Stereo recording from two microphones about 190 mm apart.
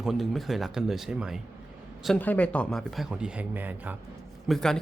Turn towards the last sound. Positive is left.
turn(degrees=5)  # may be behind; listen again after turning